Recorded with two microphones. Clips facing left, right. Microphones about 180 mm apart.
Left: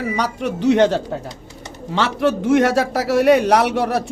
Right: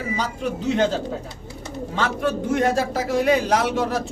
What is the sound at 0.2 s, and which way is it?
A man's voice, 75° left (ahead or behind).